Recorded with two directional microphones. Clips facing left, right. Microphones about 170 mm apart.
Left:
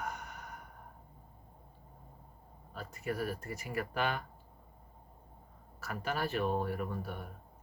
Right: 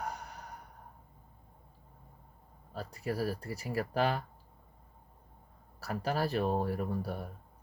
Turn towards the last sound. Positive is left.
turn(degrees=-35)  # may be behind; listen again after turning